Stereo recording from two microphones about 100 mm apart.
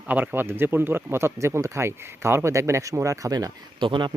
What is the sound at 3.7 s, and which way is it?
Speech, 55° right (ahead or behind).